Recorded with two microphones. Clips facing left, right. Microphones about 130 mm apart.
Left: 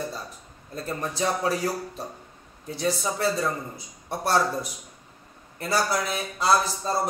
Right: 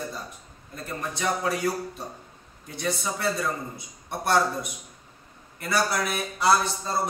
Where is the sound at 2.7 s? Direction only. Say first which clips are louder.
Left 3 dB; 35° left (ahead or behind).